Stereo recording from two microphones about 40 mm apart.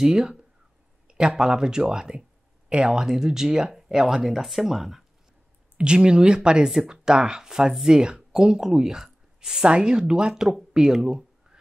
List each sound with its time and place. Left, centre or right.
0.0 s speech: centre
5.8 s speech: right